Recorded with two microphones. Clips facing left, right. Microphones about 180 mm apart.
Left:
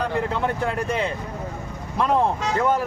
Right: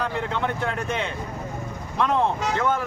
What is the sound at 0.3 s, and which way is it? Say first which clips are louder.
A man's voice: left 2 dB; 35° left (ahead or behind).